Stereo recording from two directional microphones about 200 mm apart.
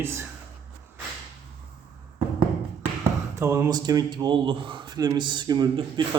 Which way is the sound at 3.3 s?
15° right (ahead or behind).